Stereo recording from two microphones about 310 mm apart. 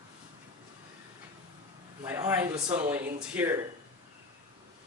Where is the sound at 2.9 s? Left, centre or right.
Centre.